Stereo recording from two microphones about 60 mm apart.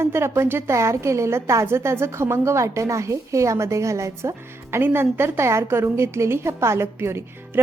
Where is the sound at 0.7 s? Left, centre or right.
Right.